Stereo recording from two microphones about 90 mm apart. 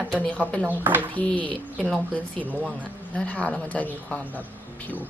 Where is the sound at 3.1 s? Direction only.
15° left (ahead or behind).